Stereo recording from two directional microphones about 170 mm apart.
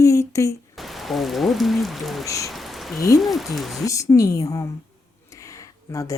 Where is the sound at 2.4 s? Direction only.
Centre (ahead or behind).